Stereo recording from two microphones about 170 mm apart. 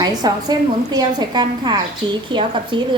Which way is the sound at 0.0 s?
25° right (ahead or behind).